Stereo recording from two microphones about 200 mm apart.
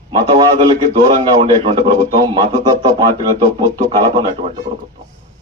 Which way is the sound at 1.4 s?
25° right (ahead or behind).